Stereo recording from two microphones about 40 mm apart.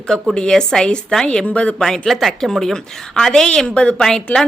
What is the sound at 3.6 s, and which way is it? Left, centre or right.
Speech, left.